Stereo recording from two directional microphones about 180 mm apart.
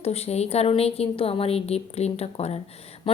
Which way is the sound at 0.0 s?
35° left (ahead or behind).